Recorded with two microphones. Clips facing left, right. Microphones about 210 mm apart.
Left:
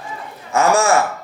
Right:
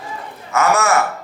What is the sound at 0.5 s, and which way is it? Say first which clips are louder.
Speech: left 1 dB; 30° left (ahead or behind).